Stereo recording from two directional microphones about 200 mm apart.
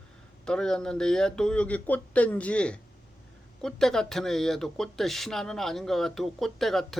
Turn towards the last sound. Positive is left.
turn(degrees=0)  # may be behind; listen again after turning